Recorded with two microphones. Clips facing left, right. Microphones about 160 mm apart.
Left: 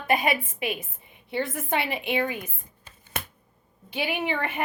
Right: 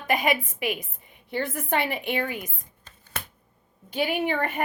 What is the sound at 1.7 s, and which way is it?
Speech, 50° right (ahead or behind).